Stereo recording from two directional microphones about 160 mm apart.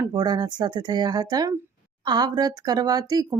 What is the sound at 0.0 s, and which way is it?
Speech, 25° right (ahead or behind).